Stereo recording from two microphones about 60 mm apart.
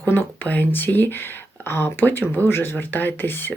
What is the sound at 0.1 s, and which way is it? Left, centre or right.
Speech, left.